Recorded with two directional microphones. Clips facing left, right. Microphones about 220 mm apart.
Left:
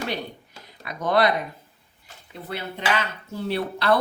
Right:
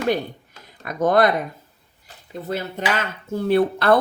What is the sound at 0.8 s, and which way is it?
Speech, 50° right (ahead or behind).